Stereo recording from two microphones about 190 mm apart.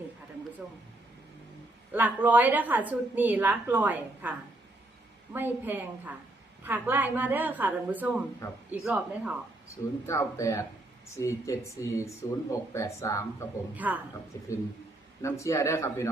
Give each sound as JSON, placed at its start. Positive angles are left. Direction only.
{"t": 1.9, "sound": "a woman's voice", "side_deg": -10}
{"t": 9.6, "sound": "speech", "side_deg": 15}
{"t": 13.7, "sound": "a woman's voice", "side_deg": -10}
{"t": 15.2, "sound": "speech", "side_deg": 15}